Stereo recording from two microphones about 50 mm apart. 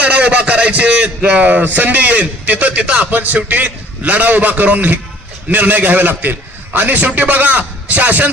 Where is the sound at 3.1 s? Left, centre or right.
Right.